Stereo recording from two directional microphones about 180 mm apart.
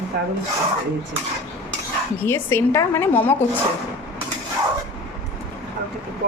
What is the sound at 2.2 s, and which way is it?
A woman's voice, 15° left (ahead or behind).